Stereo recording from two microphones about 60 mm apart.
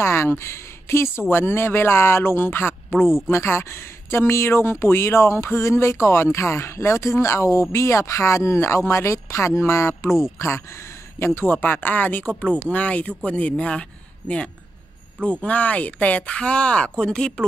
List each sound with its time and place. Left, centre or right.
0.0 s speech: left; by 17.5 s centre